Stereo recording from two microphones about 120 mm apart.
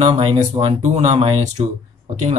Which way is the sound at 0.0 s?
50° right (ahead or behind).